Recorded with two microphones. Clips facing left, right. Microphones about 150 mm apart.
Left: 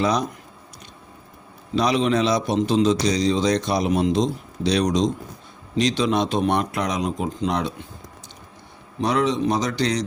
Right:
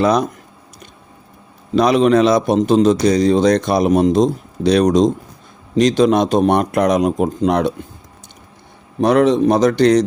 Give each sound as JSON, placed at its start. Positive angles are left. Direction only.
{"t": 0.0, "sound": "a man's voice", "side_deg": -55}
{"t": 1.7, "sound": "a man's voice", "side_deg": -50}
{"t": 9.0, "sound": "a man's voice", "side_deg": -55}